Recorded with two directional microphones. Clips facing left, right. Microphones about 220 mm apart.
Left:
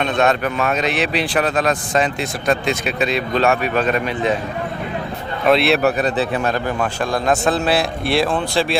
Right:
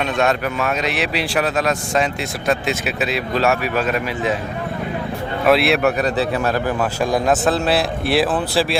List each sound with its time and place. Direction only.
0.0 s speech: 5° right (ahead or behind)
5.5 s speech: centre (ahead or behind)
5.8 s a man's voice: 30° left (ahead or behind)
6.4 s a man's voice: 5° right (ahead or behind)